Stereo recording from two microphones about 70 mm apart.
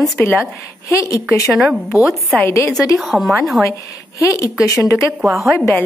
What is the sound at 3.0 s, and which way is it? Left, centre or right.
Speech, centre.